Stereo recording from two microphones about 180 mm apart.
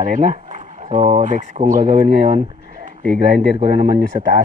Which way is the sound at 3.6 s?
50° right (ahead or behind).